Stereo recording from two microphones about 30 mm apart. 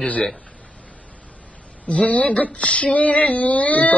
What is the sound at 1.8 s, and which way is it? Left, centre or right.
Female singing, left.